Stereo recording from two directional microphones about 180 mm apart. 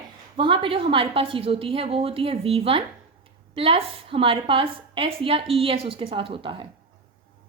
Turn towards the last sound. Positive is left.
turn(degrees=-30)  # may be behind; listen again after turning